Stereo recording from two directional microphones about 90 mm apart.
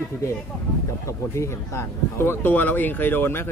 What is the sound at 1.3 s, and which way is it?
Speech, 30° left (ahead or behind).